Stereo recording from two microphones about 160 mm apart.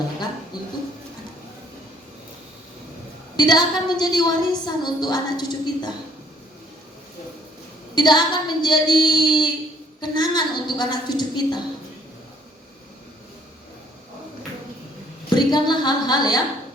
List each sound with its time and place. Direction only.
0.5 s a sound: 25° left (ahead or behind)
3.3 s a woman's voice: 25° left (ahead or behind)
7.9 s a woman's voice: 30° left (ahead or behind)
15.4 s a woman's voice: 25° left (ahead or behind)